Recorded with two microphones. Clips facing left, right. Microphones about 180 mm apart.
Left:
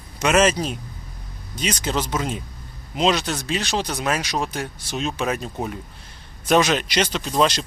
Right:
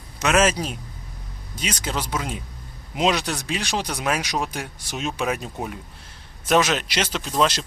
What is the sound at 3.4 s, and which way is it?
Speech, 15° right (ahead or behind).